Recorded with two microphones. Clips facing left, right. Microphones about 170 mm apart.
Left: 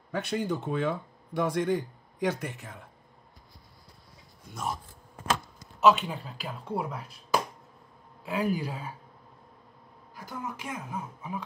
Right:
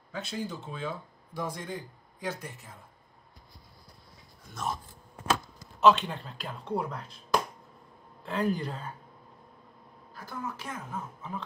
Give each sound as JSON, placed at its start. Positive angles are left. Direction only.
{"t": 0.1, "sound": "speech", "side_deg": 65}
{"t": 5.8, "sound": "a woman's voice", "side_deg": 5}
{"t": 10.1, "sound": "a woman's voice", "side_deg": 15}